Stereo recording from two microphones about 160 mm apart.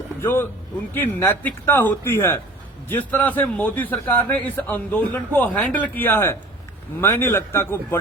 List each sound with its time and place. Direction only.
0.2 s a man's voice: 15° left (ahead or behind)